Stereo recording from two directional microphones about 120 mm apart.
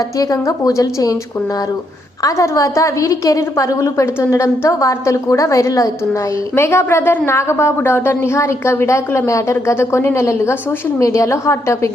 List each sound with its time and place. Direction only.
0.2 s a woman's voice: 30° left (ahead or behind)
2.2 s a woman's voice: 25° left (ahead or behind)